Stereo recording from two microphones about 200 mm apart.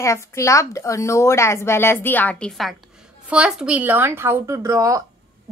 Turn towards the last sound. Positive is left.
turn(degrees=-15)  # may be behind; listen again after turning